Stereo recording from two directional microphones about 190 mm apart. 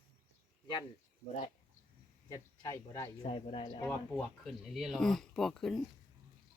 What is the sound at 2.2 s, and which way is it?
Speech, 15° left (ahead or behind).